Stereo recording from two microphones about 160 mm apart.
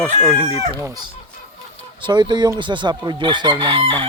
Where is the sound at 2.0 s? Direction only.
30° right (ahead or behind).